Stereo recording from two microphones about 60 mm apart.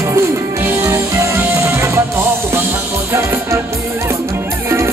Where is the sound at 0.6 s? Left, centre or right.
Right.